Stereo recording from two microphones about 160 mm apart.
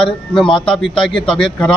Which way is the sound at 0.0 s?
Centre (ahead or behind).